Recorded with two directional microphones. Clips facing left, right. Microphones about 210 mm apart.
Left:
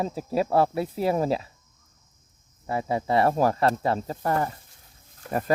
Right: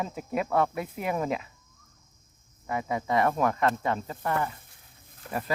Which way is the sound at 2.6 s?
30° left (ahead or behind).